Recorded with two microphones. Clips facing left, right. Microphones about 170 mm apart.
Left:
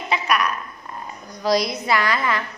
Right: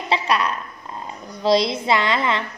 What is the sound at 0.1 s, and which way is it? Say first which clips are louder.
Speech: right 1 dB; 30° right (ahead or behind).